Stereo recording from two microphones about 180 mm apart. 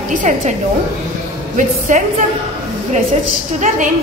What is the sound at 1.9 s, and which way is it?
Speech, 45° right (ahead or behind).